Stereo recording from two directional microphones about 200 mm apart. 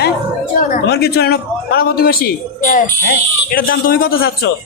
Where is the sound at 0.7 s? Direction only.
55° left (ahead or behind).